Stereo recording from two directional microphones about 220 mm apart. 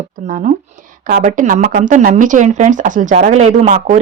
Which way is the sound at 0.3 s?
35° right (ahead or behind).